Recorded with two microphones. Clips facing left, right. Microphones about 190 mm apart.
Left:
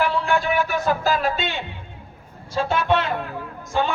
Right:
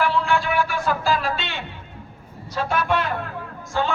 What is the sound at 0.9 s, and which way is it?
Music, 40° left (ahead or behind).